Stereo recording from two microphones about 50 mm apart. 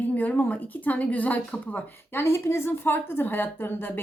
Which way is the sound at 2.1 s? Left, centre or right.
Left.